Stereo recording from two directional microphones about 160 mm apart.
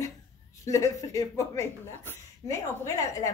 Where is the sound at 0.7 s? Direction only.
20° left (ahead or behind).